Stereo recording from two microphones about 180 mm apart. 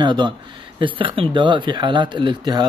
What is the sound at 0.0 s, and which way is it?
Speech, 25° right (ahead or behind).